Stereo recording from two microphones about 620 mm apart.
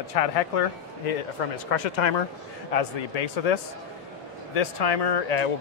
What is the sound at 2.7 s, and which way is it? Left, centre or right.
Speech, left.